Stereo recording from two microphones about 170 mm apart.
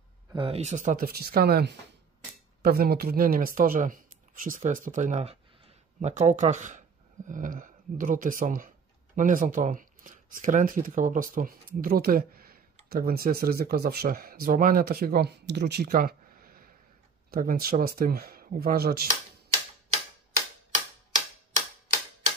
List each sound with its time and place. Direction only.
0.3 s speech: 35° right (ahead or behind); by 19.0 s 60° right (ahead or behind)